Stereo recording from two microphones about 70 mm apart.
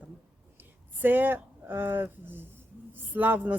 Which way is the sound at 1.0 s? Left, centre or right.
Right.